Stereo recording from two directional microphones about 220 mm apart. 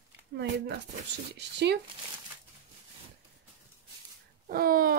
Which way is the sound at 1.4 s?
50° right (ahead or behind).